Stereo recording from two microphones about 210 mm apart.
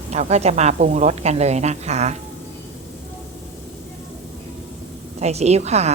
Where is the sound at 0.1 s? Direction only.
30° right (ahead or behind).